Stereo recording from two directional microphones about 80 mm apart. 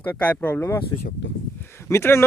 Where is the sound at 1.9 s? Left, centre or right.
Left.